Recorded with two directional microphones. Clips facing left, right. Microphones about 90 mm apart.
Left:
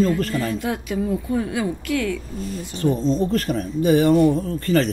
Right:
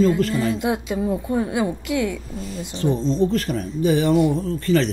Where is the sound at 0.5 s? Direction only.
20° right (ahead or behind).